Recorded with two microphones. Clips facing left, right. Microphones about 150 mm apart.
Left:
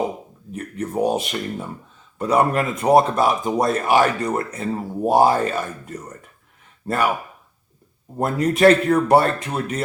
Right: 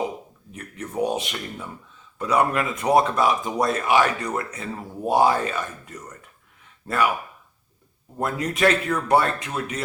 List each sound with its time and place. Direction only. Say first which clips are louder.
0.5 s speech: left 5 dB; 35° left (ahead or behind)
8.2 s speech: left 6 dB; 40° left (ahead or behind)